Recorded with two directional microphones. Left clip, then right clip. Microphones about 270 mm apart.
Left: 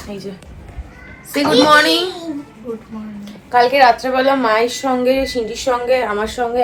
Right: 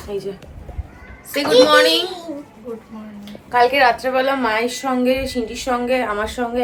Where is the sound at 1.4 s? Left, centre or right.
Centre.